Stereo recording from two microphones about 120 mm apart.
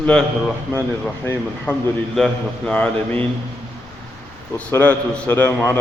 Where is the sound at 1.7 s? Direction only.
15° left (ahead or behind).